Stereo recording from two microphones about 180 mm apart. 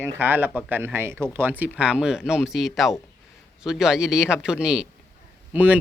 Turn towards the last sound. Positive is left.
turn(degrees=-10)  # may be behind; listen again after turning